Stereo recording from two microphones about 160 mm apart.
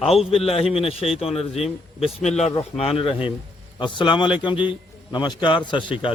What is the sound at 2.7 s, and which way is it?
A man's voice, 35° left (ahead or behind).